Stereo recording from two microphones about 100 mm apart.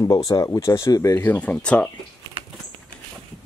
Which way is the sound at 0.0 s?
35° left (ahead or behind).